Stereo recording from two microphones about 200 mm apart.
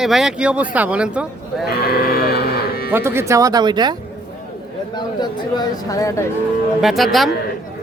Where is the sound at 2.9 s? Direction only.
10° right (ahead or behind).